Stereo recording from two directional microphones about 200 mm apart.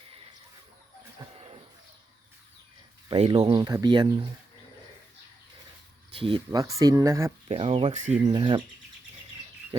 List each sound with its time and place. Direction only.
1.2 s a sound: 30° right (ahead or behind)
3.1 s speech: 25° right (ahead or behind)
6.1 s speech: 25° right (ahead or behind)
7.4 s speech: 30° right (ahead or behind)
8.2 s speech: 25° right (ahead or behind)